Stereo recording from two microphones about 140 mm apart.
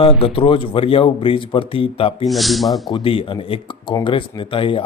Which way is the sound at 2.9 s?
40° left (ahead or behind).